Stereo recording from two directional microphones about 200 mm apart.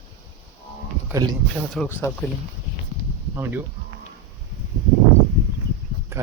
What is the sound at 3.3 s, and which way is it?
Speech, 10° right (ahead or behind).